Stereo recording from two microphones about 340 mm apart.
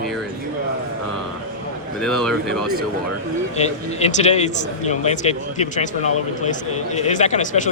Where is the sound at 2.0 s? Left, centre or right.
Centre.